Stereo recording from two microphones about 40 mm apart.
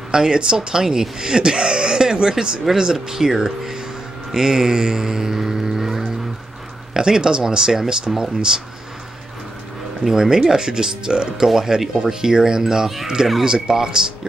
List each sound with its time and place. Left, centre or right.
0.1 s speech: centre
6.9 s speech: centre
10.0 s speech: centre